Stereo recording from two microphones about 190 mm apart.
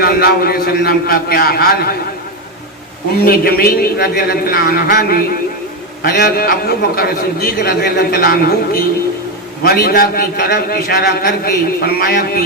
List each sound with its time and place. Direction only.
0.0 s a man's voice: 55° left (ahead or behind)
3.2 s a man's voice: 50° left (ahead or behind)